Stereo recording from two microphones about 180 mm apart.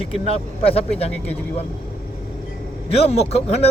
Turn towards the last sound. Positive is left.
turn(degrees=35)  # may be behind; listen again after turning